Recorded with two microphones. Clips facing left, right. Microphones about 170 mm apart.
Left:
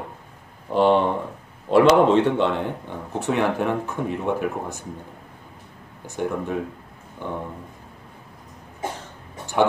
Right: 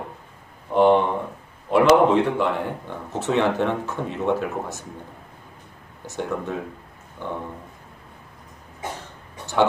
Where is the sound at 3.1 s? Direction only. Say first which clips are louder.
Right 1 dB; 10° left (ahead or behind).